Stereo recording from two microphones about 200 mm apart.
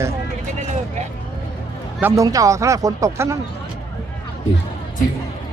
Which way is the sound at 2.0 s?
15° right (ahead or behind).